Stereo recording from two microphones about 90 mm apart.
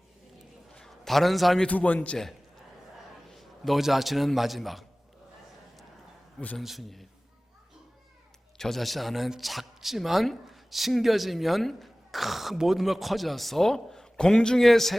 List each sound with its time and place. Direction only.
0.7 s a sound: 5° left (ahead or behind)
1.6 s a man's voice: 15° left (ahead or behind)
3.3 s a man's voice: centre (ahead or behind)
6.6 s speech: centre (ahead or behind)
8.5 s speech: 5° left (ahead or behind)